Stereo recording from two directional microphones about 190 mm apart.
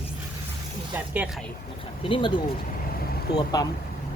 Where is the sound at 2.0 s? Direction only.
30° left (ahead or behind).